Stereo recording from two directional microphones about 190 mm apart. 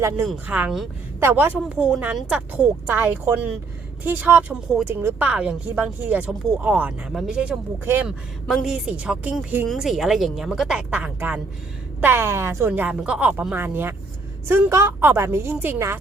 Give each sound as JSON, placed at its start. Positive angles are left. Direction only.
{"t": 0.3, "sound": "speech", "side_deg": -10}